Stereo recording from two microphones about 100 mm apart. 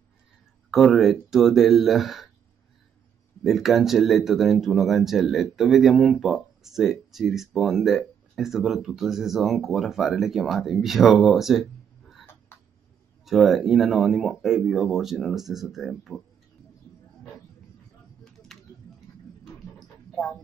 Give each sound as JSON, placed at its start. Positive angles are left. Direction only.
{"t": 0.7, "sound": "speech", "side_deg": 0}
{"t": 3.4, "sound": "speech", "side_deg": 0}
{"t": 12.5, "sound": "a sound", "side_deg": 25}
{"t": 13.2, "sound": "speech", "side_deg": 0}